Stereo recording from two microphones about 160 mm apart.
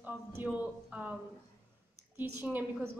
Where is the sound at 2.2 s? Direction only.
10° right (ahead or behind).